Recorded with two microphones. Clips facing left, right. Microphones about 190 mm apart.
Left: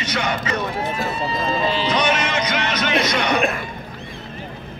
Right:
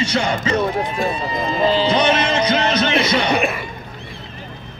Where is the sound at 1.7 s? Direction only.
30° right (ahead or behind).